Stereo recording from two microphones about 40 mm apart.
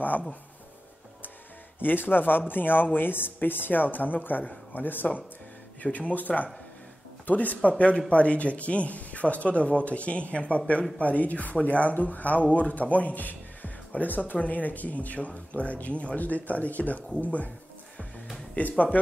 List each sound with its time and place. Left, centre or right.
1.8 s speech: left
5.8 s a man's voice: left
7.7 s a man's voice: left
18.6 s a man's voice: left